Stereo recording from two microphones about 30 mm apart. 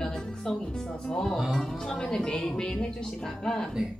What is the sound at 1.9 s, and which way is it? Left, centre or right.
Speech, left.